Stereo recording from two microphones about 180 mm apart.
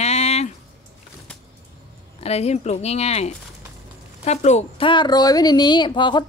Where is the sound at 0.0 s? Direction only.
35° left (ahead or behind).